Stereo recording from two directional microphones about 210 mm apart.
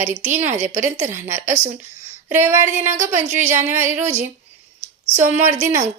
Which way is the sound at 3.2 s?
35° right (ahead or behind).